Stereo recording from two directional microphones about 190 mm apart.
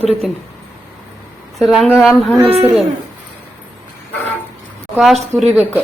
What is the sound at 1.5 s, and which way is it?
Speech, centre (ahead or behind).